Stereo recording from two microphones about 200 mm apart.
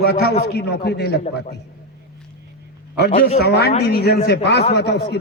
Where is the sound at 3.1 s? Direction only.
30° left (ahead or behind).